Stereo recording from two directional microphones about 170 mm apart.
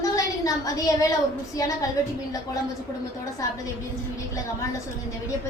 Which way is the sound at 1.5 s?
20° left (ahead or behind).